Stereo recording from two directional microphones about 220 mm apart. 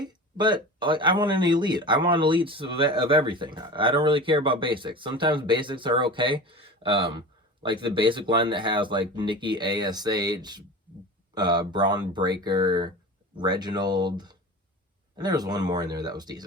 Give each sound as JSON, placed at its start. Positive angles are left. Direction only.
{"t": 0.0, "sound": "speech", "side_deg": -20}